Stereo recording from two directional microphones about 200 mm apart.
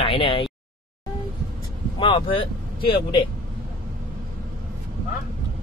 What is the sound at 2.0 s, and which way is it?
Speech, 25° left (ahead or behind).